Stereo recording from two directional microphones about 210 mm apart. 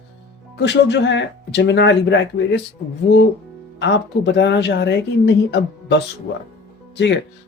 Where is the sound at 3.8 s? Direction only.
55° left (ahead or behind).